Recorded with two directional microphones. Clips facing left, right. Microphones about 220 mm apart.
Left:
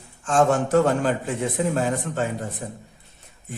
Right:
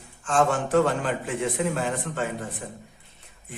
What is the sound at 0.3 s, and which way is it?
Speech, 40° left (ahead or behind).